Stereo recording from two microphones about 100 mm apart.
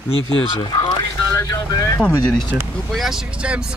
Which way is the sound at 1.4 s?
35° left (ahead or behind).